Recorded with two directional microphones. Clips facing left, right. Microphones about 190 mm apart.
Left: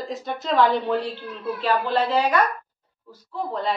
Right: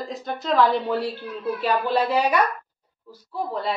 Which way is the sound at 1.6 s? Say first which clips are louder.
Even; 10° right (ahead or behind).